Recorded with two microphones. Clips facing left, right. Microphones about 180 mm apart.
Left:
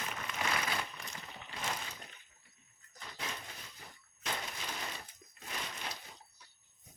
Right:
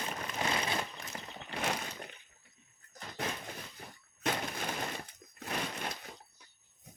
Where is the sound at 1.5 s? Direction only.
65° right (ahead or behind).